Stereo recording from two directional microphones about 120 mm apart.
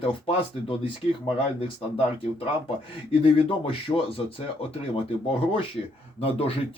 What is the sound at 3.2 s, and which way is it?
Speech, 50° left (ahead or behind).